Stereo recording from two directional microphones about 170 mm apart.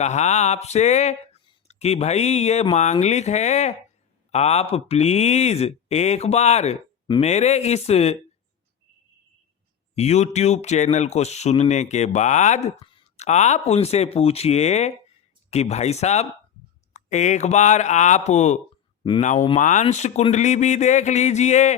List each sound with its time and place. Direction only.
0.0 s speech: 40° left (ahead or behind)
9.9 s speech: 40° left (ahead or behind)